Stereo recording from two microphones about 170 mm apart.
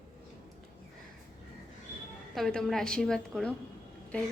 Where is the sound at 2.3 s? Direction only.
5° left (ahead or behind).